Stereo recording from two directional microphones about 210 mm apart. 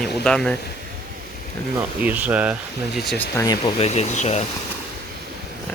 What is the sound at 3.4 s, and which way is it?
Speech, 20° left (ahead or behind).